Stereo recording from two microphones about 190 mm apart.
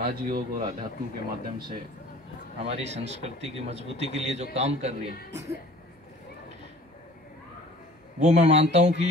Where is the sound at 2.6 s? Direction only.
35° right (ahead or behind).